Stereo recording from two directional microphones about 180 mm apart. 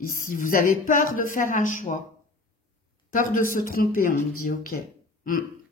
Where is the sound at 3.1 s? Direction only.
45° left (ahead or behind).